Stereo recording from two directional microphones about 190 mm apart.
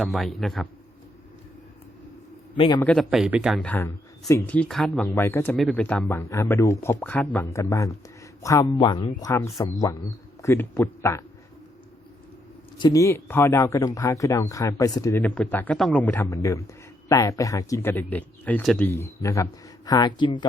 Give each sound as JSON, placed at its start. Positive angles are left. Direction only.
{"t": 0.0, "sound": "speech", "side_deg": 0}
{"t": 2.6, "sound": "speech", "side_deg": 25}
{"t": 2.8, "sound": "speech", "side_deg": 5}
{"t": 3.6, "sound": "speech", "side_deg": 10}
{"t": 12.8, "sound": "speech", "side_deg": 15}